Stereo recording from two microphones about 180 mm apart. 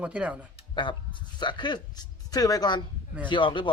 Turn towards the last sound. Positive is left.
turn(degrees=25)  # may be behind; listen again after turning